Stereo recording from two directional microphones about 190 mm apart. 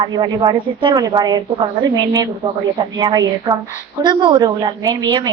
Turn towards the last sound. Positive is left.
turn(degrees=-20)  # may be behind; listen again after turning